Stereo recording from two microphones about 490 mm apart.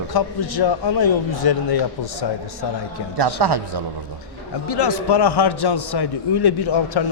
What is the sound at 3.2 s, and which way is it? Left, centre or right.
Speech, right.